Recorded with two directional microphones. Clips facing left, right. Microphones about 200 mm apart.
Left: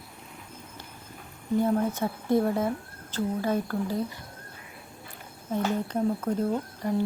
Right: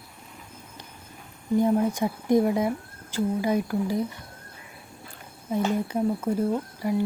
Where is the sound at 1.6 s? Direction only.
15° right (ahead or behind).